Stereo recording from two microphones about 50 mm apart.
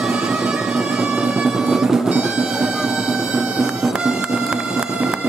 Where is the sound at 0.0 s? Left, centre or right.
Centre.